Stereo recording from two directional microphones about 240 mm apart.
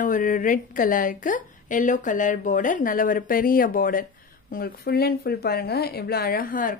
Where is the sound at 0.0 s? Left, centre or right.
Left.